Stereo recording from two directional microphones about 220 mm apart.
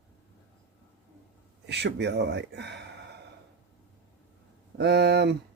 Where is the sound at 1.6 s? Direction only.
50° right (ahead or behind).